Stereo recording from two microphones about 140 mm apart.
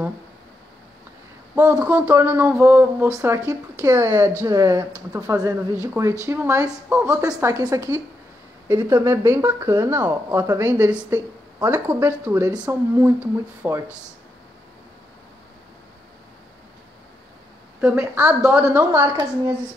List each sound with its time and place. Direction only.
1.5 s a woman's voice: 15° right (ahead or behind)
17.9 s a woman's voice: 15° right (ahead or behind)